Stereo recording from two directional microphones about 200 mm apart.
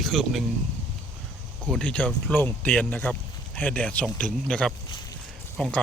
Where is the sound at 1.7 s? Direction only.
5° left (ahead or behind).